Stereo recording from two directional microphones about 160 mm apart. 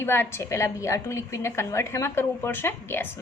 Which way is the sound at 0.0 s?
15° left (ahead or behind).